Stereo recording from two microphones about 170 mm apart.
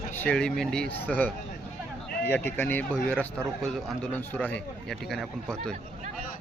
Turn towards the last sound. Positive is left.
turn(degrees=5)  # may be behind; listen again after turning